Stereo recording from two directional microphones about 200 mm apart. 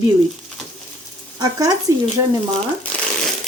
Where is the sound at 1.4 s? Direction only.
20° right (ahead or behind).